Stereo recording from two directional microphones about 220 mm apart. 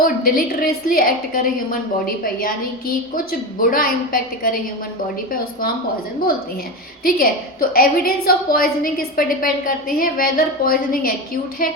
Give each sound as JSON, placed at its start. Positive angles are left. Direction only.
{"t": 0.0, "sound": "a woman's voice", "side_deg": 40}
{"t": 7.0, "sound": "a woman's voice", "side_deg": 40}